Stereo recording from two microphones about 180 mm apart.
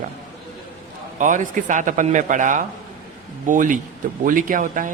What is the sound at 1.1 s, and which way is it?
Speech, 45° right (ahead or behind).